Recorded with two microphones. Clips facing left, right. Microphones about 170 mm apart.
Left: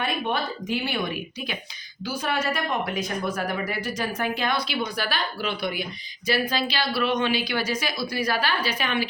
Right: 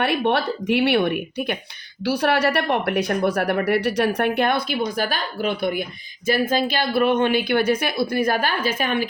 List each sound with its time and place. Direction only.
0.0 s speech: 70° right (ahead or behind)
2.0 s a woman's voice: 70° right (ahead or behind); by 9.0 s 50° right (ahead or behind)